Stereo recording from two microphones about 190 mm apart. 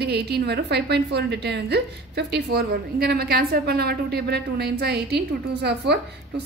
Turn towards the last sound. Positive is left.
turn(degrees=-60)  # may be behind; listen again after turning